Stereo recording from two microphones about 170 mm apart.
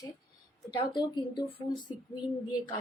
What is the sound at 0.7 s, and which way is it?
Speech, 25° left (ahead or behind).